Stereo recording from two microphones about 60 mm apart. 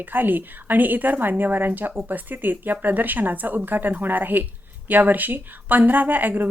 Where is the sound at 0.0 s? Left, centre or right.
Right.